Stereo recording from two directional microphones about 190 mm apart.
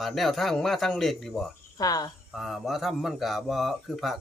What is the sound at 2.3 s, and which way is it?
Speech, centre (ahead or behind).